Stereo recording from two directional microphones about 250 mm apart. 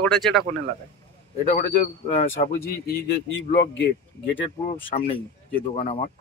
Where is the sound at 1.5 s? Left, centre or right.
Left.